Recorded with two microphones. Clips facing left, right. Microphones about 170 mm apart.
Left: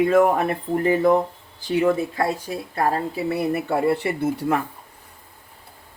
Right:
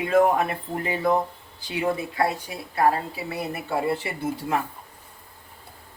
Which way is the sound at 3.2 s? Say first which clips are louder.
Left 8 dB; 55° left (ahead or behind).